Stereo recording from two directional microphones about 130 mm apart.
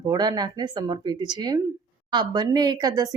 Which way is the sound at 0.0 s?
30° right (ahead or behind).